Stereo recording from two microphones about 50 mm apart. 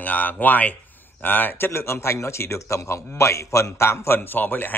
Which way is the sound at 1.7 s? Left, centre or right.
Left.